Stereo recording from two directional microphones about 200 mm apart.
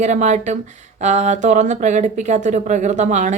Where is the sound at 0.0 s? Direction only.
35° right (ahead or behind).